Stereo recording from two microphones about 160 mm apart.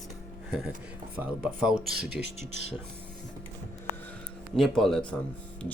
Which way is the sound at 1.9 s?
75° right (ahead or behind).